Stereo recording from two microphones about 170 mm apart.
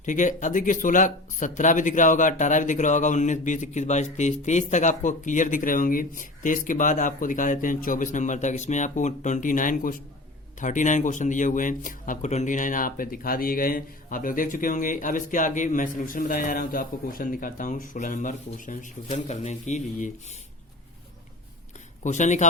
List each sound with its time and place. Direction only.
0.0 s speech: 45° left (ahead or behind)
22.0 s speech: 45° left (ahead or behind)